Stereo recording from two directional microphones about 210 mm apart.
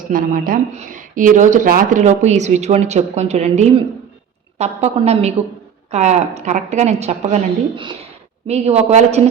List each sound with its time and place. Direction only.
0.1 s speech: 40° right (ahead or behind)
8.4 s speech: 30° right (ahead or behind)